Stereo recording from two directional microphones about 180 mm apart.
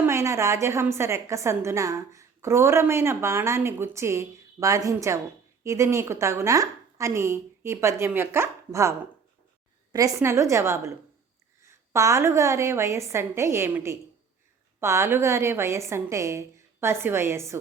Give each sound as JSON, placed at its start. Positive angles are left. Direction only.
{"t": 0.0, "sound": "a woman's voice", "side_deg": -15}